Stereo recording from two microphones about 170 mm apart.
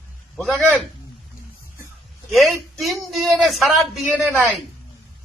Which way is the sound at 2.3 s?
Centre (ahead or behind).